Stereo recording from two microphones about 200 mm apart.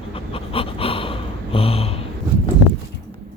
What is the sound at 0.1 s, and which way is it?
Pant, 25° left (ahead or behind).